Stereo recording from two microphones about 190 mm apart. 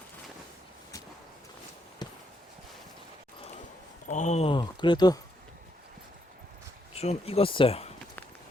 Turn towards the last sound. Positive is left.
turn(degrees=30)  # may be behind; listen again after turning